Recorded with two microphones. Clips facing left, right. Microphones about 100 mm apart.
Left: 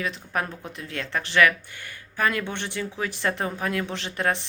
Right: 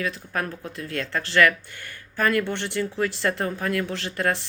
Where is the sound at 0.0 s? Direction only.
20° left (ahead or behind).